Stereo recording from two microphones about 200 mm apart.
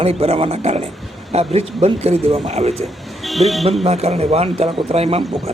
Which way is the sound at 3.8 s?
30° right (ahead or behind).